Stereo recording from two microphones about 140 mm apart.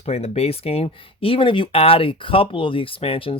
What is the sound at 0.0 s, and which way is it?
Speech, 45° left (ahead or behind).